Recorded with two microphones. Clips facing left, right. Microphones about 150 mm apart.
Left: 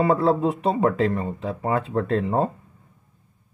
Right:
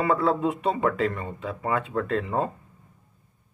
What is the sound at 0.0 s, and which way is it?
Speech, 35° left (ahead or behind).